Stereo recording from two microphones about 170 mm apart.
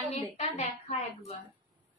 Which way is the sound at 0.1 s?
40° left (ahead or behind).